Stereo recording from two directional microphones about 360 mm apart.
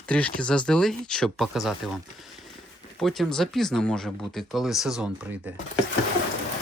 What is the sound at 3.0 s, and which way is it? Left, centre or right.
Speech, centre.